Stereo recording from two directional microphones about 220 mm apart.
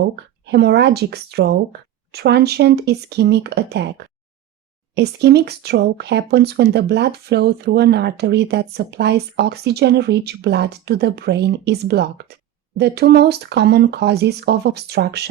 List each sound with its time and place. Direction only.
0.4 s speech: 50° right (ahead or behind)